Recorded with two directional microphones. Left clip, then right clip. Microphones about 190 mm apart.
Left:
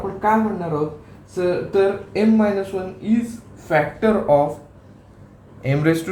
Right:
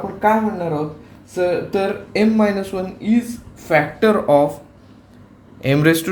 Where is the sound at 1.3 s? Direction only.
55° right (ahead or behind).